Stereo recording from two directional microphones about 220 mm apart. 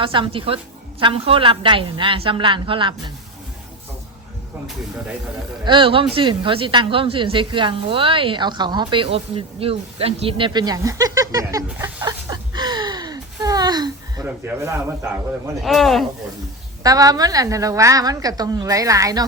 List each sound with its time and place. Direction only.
0.0 s a woman's voice: 25° right (ahead or behind)
5.6 s a woman's voice: 20° right (ahead or behind)
15.6 s speech: centre (ahead or behind)
16.8 s a woman's voice: 15° right (ahead or behind)